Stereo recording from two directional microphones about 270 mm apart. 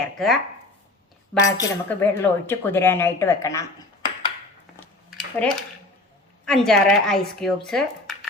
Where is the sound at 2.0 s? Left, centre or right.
Centre.